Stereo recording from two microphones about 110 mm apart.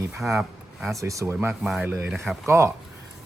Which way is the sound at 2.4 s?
25° right (ahead or behind).